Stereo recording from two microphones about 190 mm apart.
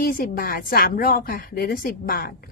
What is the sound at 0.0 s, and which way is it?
Speech, 50° left (ahead or behind).